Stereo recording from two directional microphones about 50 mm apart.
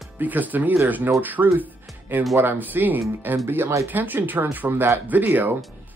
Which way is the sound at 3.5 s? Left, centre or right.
Right.